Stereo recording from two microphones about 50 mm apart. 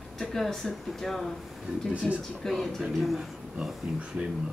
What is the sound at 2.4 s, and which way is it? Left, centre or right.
Speech, centre.